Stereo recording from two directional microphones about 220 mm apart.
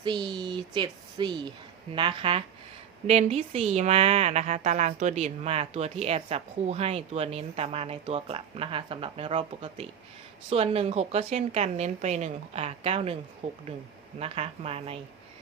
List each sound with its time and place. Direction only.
0.0 s speech: 20° right (ahead or behind)